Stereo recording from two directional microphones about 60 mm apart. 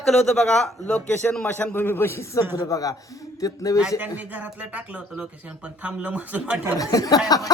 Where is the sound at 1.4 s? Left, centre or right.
Left.